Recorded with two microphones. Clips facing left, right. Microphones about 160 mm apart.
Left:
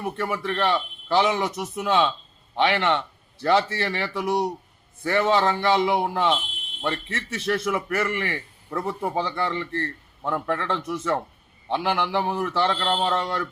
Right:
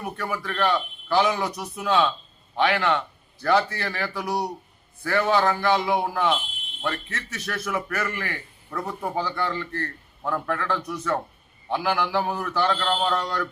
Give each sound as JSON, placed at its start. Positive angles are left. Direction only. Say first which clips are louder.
{"t": 0.0, "sound": "a man's voice", "louder": "left 3 dB", "side_deg": 25}